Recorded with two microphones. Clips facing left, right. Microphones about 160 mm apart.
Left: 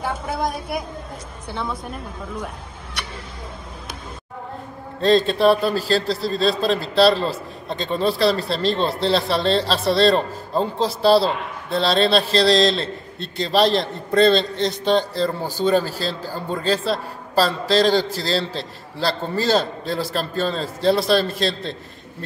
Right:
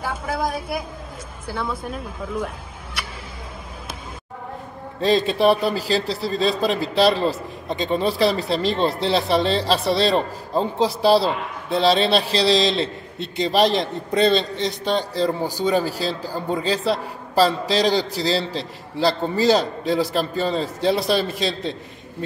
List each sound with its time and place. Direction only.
5.0 s a man's voice: 10° right (ahead or behind)